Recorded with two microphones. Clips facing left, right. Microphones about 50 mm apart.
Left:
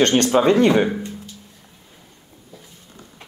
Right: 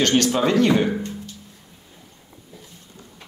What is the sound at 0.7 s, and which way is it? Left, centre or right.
Speech, centre.